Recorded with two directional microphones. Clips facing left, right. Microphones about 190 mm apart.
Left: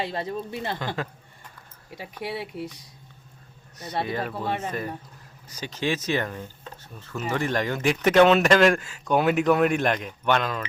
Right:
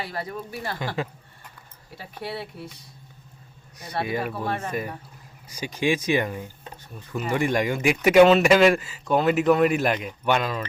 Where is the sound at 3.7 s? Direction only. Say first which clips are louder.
Right 1 dB; 10° right (ahead or behind).